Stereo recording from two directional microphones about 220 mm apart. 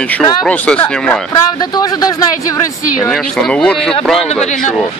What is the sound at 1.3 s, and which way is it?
Speech, 20° left (ahead or behind).